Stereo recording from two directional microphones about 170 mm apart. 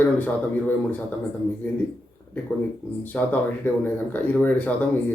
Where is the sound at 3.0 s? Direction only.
10° left (ahead or behind).